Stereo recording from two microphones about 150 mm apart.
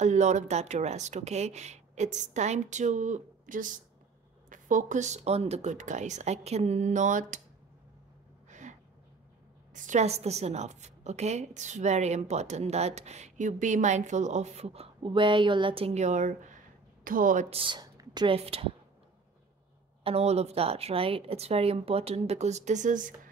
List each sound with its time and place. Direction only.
0.0 s a woman's voice: 50° right (ahead or behind)
8.5 s a sound: 55° right (ahead or behind)
9.8 s a woman's voice: 55° right (ahead or behind)
17.5 s a woman's voice: 35° right (ahead or behind)
20.0 s a woman's voice: 40° right (ahead or behind); by 23.3 s 60° right (ahead or behind)